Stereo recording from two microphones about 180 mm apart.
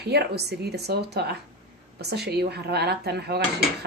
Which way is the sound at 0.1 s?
65° right (ahead or behind).